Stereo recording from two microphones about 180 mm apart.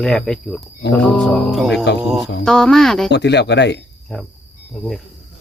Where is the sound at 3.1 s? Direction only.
75° left (ahead or behind).